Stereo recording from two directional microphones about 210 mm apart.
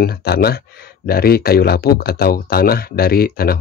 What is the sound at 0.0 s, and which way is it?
Speech, 45° left (ahead or behind).